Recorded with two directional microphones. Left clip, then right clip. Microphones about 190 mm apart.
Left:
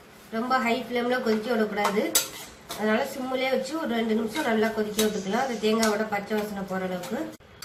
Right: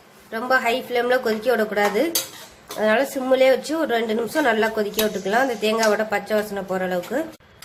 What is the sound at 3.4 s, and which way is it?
Speech, 55° right (ahead or behind).